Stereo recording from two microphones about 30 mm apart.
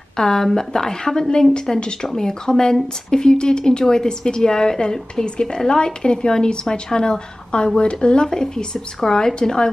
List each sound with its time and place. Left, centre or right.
0.1 s a woman's voice: left
1.8 s a woman's voice: left
8.5 s a woman's voice: left